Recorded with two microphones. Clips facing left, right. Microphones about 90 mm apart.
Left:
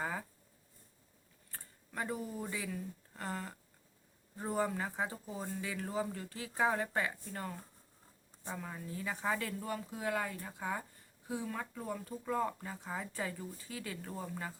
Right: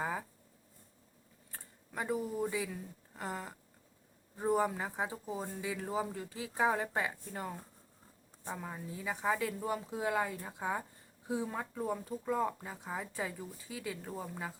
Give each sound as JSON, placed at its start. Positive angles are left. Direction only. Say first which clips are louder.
{"t": 0.0, "sound": "a sound", "louder": "right 2 dB", "side_deg": -10}
{"t": 1.5, "sound": "speech", "louder": "right 1 dB", "side_deg": -10}
{"t": 9.6, "sound": "speech", "louder": "right 3 dB", "side_deg": -20}